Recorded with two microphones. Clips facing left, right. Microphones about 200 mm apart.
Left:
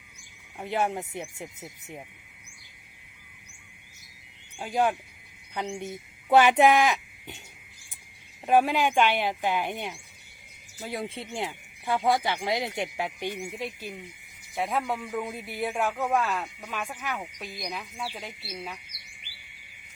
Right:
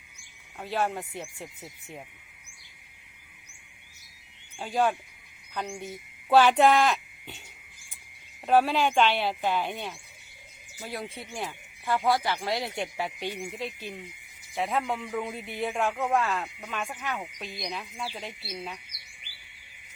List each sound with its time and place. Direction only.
0.6 s speech: 20° left (ahead or behind)
4.6 s speech: 15° left (ahead or behind)
8.4 s speech: 15° left (ahead or behind)
14.5 s a man's voice: centre (ahead or behind)